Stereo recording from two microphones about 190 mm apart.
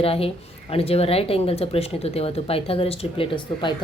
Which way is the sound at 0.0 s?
30° left (ahead or behind).